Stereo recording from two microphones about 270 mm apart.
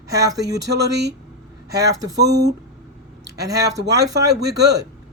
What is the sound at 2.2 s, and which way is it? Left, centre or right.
Speech, right.